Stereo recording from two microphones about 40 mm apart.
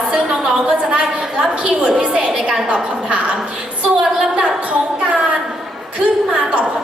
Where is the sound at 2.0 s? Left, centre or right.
Right.